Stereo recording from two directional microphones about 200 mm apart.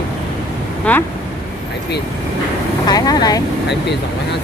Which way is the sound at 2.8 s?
20° left (ahead or behind).